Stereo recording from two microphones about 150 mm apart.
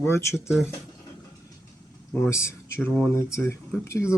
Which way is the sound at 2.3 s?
20° left (ahead or behind).